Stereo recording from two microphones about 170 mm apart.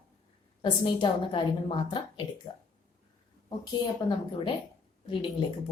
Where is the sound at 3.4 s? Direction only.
25° left (ahead or behind).